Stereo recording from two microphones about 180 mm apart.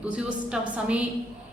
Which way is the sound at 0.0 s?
5° right (ahead or behind).